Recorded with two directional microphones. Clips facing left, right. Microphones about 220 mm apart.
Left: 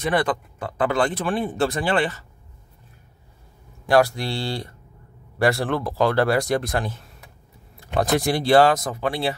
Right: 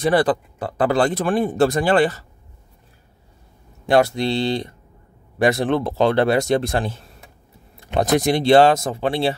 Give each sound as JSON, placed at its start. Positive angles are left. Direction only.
{"t": 0.0, "sound": "speech", "side_deg": -35}
{"t": 3.8, "sound": "speech", "side_deg": -25}